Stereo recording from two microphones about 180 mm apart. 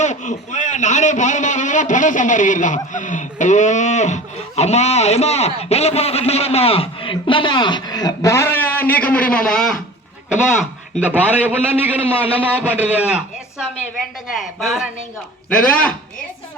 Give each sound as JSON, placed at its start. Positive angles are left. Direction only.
{"t": 0.0, "sound": "a man's voice", "side_deg": 40}
{"t": 11.1, "sound": "a man's voice", "side_deg": -10}